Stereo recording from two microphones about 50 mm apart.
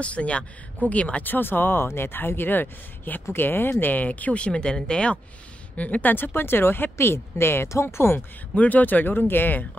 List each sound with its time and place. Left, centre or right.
0.0 s speech: left
3.8 s speech: left
6.1 s speech: left
8.5 s speech: left